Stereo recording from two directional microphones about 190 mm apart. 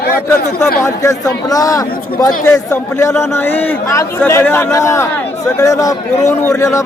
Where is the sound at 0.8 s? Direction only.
15° left (ahead or behind).